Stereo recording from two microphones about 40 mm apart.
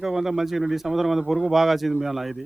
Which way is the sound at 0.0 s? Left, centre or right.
Centre.